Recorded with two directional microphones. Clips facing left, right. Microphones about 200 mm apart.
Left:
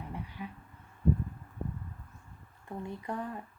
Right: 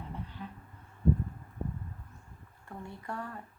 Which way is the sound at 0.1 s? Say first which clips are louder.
Left 1 dB; 10° left (ahead or behind).